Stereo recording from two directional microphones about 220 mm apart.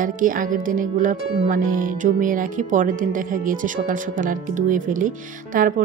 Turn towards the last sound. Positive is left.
turn(degrees=-40)  # may be behind; listen again after turning